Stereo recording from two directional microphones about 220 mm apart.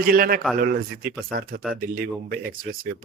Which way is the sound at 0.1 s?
40° right (ahead or behind).